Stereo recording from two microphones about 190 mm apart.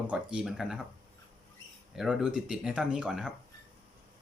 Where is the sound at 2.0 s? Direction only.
5° right (ahead or behind).